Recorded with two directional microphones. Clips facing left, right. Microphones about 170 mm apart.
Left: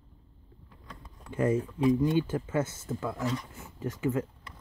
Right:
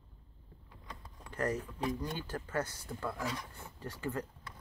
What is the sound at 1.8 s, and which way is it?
Speech, 20° left (ahead or behind).